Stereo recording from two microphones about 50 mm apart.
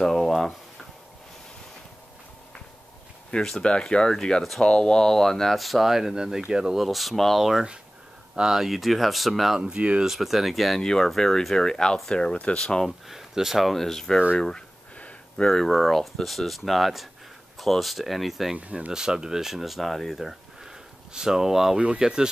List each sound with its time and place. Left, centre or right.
0.0 s a sound: centre
3.3 s speech: centre
5.6 s speech: centre
9.6 s speech: right
10.0 s speech: centre
10.8 s speech: centre
12.5 s speech: centre
13.1 s speech: centre
15.0 s a sound: left
15.4 s speech: centre
15.7 s speech: centre
18.6 s speech: right
18.9 s speech: centre